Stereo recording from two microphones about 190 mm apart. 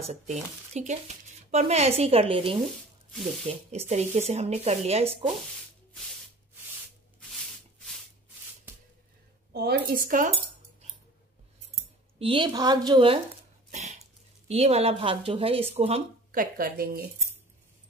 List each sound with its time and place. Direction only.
0.1 s speech: 35° right (ahead or behind)
2.5 s speech: centre (ahead or behind)
3.9 s speech: 35° right (ahead or behind)
9.5 s speech: 55° right (ahead or behind)
12.2 s a woman's voice: 25° right (ahead or behind)
13.7 s cough: 35° right (ahead or behind)
14.5 s speech: 35° right (ahead or behind)
16.3 s speech: 50° right (ahead or behind)